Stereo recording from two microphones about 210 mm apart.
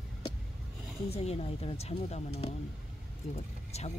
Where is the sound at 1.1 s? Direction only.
30° left (ahead or behind).